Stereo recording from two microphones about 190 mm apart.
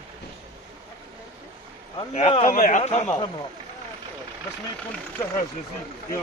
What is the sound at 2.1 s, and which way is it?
Speech, 35° left (ahead or behind).